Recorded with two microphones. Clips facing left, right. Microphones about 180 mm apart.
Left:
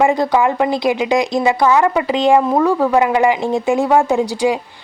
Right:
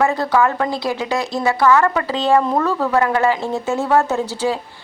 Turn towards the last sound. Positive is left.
turn(degrees=15)  # may be behind; listen again after turning